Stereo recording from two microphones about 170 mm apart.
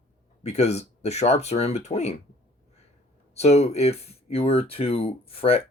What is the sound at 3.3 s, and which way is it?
Speech, 40° left (ahead or behind).